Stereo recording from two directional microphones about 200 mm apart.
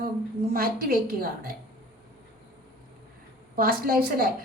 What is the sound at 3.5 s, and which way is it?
Speech, 45° right (ahead or behind).